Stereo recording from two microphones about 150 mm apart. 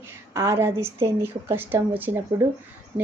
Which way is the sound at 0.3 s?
20° right (ahead or behind).